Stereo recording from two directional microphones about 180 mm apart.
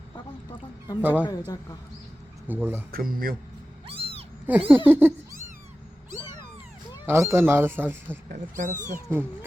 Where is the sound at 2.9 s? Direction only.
55° right (ahead or behind).